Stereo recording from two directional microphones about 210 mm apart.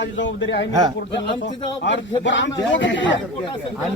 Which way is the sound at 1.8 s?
60° left (ahead or behind).